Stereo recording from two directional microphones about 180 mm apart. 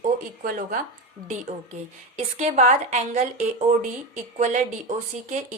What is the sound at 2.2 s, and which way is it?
A woman's voice, 40° right (ahead or behind).